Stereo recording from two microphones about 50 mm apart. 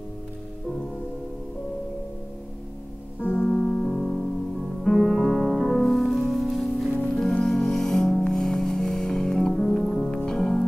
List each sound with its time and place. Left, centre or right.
3.3 s music: centre
7.4 s music: centre